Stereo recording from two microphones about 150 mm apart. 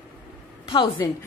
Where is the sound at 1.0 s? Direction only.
25° left (ahead or behind).